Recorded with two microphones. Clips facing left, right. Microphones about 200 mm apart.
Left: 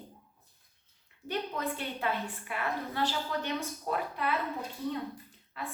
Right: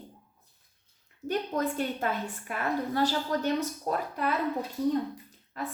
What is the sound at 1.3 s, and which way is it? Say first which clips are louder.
A woman's voice: right 5 dB; 45° right (ahead or behind).